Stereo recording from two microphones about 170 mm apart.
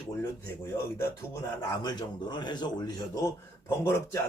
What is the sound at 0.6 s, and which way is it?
Speech, 15° left (ahead or behind).